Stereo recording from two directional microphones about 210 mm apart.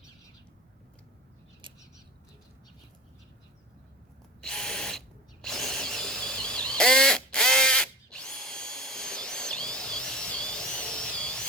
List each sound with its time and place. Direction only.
1.6 s bird: 25° right (ahead or behind)
4.4 s drill: 5° left (ahead or behind)